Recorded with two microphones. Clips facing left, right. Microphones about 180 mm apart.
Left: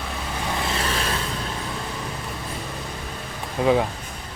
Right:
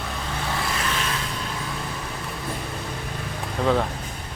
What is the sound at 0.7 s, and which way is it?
Vehicle, 35° left (ahead or behind).